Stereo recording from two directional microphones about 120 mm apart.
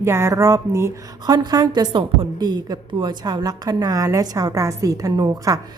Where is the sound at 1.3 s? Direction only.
35° right (ahead or behind).